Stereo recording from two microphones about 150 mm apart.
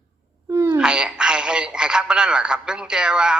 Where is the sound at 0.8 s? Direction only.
5° right (ahead or behind).